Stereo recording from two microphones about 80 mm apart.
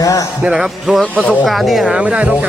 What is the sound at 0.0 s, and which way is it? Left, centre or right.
Music, left.